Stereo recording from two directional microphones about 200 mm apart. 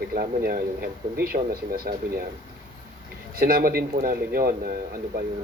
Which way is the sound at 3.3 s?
50° right (ahead or behind).